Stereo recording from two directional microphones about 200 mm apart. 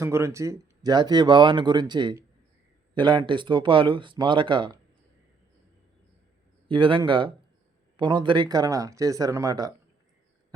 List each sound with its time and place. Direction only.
0.0 s speech: 15° right (ahead or behind)
6.7 s speech: 25° right (ahead or behind)